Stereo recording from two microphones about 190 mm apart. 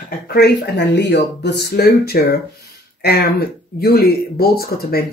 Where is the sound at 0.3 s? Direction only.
60° left (ahead or behind).